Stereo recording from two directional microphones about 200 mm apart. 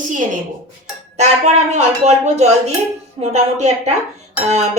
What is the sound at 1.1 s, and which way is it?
Speech, 35° right (ahead or behind).